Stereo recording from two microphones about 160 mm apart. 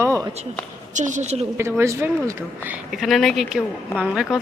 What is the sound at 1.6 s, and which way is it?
Speech, 15° right (ahead or behind).